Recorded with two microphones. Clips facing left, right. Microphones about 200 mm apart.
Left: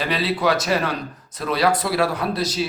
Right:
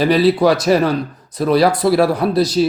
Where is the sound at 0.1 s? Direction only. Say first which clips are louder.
Right 6 dB; 35° right (ahead or behind).